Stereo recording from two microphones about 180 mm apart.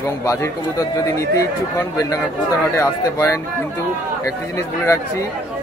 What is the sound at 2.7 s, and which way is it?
Speech, 15° left (ahead or behind).